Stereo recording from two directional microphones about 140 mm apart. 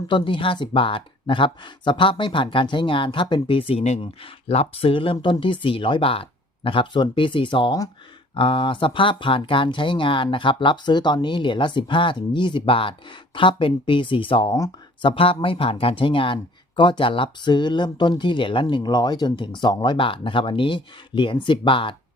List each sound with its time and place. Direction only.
0.1 s speech: 35° left (ahead or behind)